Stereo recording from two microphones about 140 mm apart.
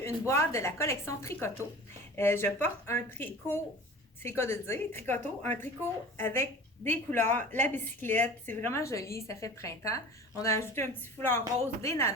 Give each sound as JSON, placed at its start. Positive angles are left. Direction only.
{"t": 0.0, "sound": "a woman's voice", "side_deg": 20}